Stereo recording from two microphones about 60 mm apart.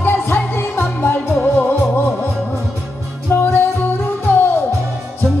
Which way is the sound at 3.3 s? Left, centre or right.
Left.